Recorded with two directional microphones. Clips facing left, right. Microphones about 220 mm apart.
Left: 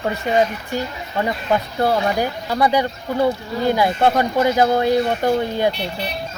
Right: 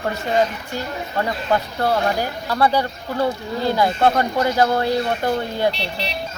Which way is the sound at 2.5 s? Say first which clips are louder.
Even; 15° left (ahead or behind).